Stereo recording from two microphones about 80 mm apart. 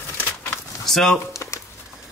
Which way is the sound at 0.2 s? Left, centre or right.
Left.